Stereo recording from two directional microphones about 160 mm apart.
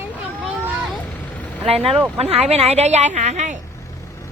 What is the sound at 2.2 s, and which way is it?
A woman's voice, 40° right (ahead or behind).